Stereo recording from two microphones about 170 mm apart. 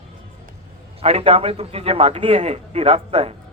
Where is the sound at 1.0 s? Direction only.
35° right (ahead or behind).